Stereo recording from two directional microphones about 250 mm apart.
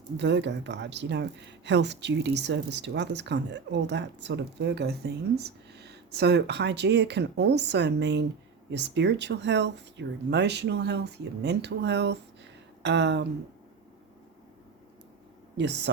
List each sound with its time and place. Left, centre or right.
0.2 s speech: right
15.5 s speech: right